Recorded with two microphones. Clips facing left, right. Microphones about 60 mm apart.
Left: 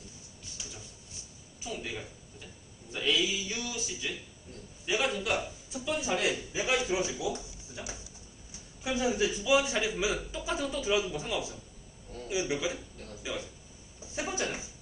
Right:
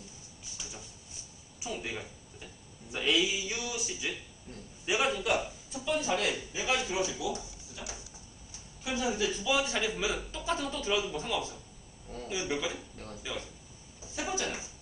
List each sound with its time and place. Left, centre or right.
1.5 s a sound: centre
2.9 s a man's voice: centre
6.1 s a man's voice: centre
6.6 s a man's voice: left
9.4 s a man's voice: centre
14.3 s a sound: left